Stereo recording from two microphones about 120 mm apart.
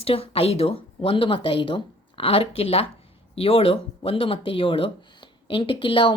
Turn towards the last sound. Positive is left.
turn(degrees=45)  # may be behind; listen again after turning